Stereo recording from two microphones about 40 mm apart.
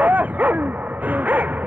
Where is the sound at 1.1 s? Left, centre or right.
Right.